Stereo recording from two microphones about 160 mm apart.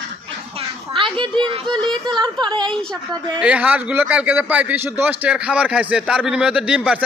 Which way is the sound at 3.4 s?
5° right (ahead or behind).